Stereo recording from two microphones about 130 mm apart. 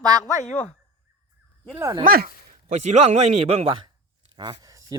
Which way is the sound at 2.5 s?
75° right (ahead or behind).